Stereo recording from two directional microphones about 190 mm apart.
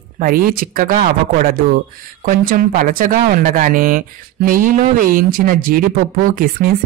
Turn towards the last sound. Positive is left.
turn(degrees=-45)  # may be behind; listen again after turning